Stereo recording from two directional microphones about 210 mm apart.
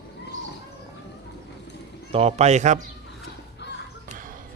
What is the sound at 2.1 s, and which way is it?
Speech, 30° right (ahead or behind).